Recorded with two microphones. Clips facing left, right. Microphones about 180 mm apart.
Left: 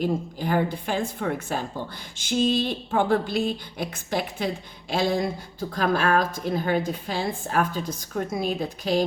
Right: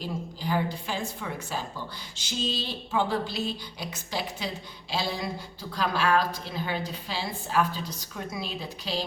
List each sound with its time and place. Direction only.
0.0 s speech: 55° left (ahead or behind)